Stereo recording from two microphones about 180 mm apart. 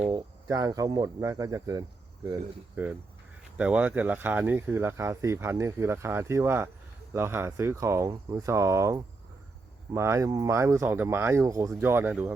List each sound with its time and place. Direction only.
0.1 s speech: 20° right (ahead or behind)